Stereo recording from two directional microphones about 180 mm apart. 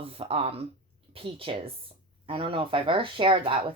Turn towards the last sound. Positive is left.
turn(degrees=-30)  # may be behind; listen again after turning